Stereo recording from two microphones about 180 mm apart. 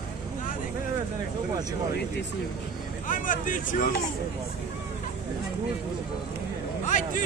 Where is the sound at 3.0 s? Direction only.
45° left (ahead or behind).